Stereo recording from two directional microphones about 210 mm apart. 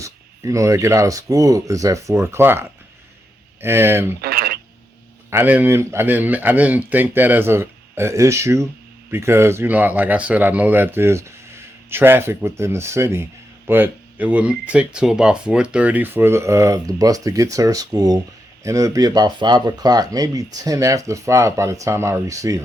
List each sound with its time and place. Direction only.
0.0 s speech: 15° right (ahead or behind)
4.2 s a sound: 50° right (ahead or behind)
5.3 s speech: 10° right (ahead or behind)